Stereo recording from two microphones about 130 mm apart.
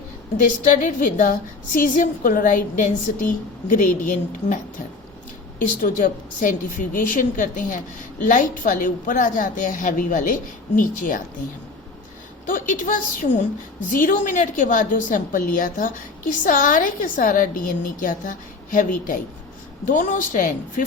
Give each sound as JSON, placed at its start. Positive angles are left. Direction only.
{"t": 0.6, "sound": "a woman's voice", "side_deg": 80}
{"t": 5.5, "sound": "a woman's voice", "side_deg": 90}
{"t": 12.5, "sound": "a woman's voice", "side_deg": 90}